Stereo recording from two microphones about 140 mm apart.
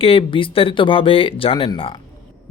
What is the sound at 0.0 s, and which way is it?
Speech, 40° left (ahead or behind).